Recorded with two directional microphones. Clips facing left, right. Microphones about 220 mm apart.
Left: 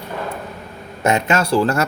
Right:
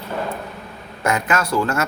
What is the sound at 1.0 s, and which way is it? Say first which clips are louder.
Speech: left 3 dB; 25° left (ahead or behind).